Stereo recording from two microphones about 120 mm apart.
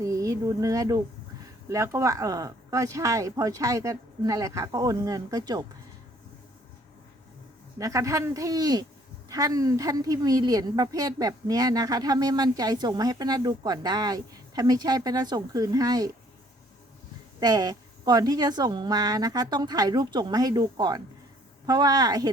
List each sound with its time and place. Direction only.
0.0 s speech: 25° right (ahead or behind)
7.8 s a woman's voice: 25° right (ahead or behind)
17.4 s a woman's voice: 35° right (ahead or behind)